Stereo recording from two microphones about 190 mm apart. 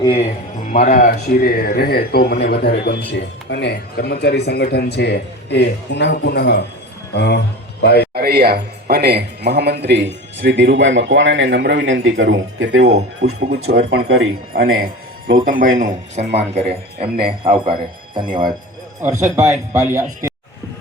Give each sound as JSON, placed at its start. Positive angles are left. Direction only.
{"t": 0.0, "sound": "a man's voice", "side_deg": 25}
{"t": 0.7, "sound": "a man's voice", "side_deg": 40}
{"t": 8.1, "sound": "a man's voice", "side_deg": -55}
{"t": 15.4, "sound": "a man's voice", "side_deg": -45}
{"t": 15.8, "sound": "a man's voice", "side_deg": -35}